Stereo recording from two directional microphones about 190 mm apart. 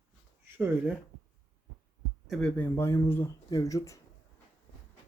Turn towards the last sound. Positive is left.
turn(degrees=15)  # may be behind; listen again after turning